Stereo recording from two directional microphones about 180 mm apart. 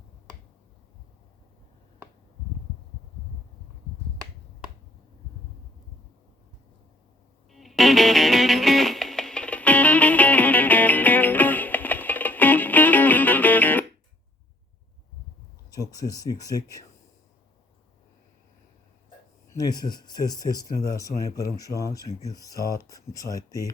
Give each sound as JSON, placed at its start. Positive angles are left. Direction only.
{"t": 7.5, "sound": "music", "side_deg": 0}
{"t": 15.7, "sound": "speech", "side_deg": 20}
{"t": 19.5, "sound": "speech", "side_deg": 20}